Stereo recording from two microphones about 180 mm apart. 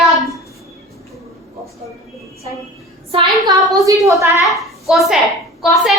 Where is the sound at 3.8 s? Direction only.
20° right (ahead or behind).